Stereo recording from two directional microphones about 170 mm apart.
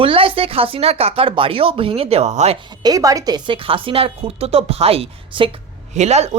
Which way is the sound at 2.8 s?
20° right (ahead or behind).